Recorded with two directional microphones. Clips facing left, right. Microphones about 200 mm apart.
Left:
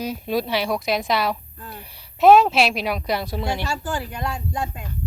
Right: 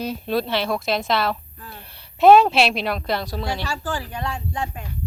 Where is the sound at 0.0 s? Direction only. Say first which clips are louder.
Even; 10° left (ahead or behind).